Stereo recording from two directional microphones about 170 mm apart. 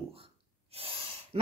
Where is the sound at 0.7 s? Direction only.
35° right (ahead or behind).